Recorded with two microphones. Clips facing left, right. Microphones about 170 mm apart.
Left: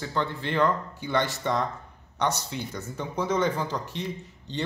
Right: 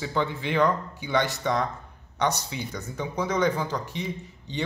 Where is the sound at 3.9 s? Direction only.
10° right (ahead or behind).